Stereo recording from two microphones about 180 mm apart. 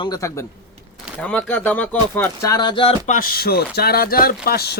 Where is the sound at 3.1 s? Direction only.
50° left (ahead or behind).